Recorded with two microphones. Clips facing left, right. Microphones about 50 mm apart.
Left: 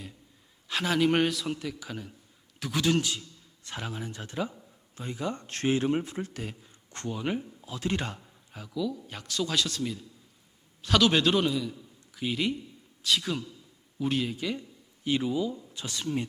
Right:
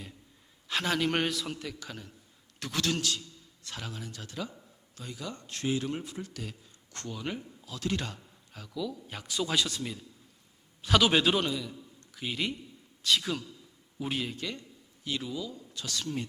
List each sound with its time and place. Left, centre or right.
0.7 s a man's voice: centre
2.9 s a sound: centre
3.7 s speech: left
5.5 s speech: left
8.7 s a man's voice: centre
15.0 s speech: left